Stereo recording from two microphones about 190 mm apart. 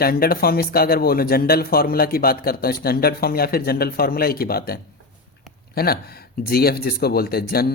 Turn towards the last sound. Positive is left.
turn(degrees=55)  # may be behind; listen again after turning